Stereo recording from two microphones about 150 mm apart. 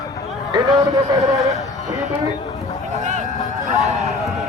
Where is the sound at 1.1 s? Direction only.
20° right (ahead or behind).